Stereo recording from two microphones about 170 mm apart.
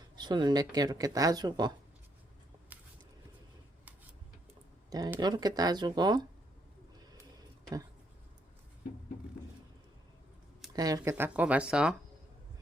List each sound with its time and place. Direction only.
0.2 s speech: 25° right (ahead or behind)
2.7 s a sound: 10° right (ahead or behind)
4.9 s speech: 20° right (ahead or behind)
10.8 s speech: 20° right (ahead or behind)
11.1 s speech: 10° right (ahead or behind)